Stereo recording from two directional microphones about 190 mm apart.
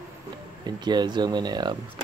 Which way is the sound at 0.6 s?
20° right (ahead or behind).